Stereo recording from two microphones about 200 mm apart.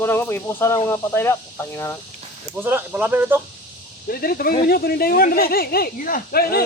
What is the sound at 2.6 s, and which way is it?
Speech, 10° right (ahead or behind).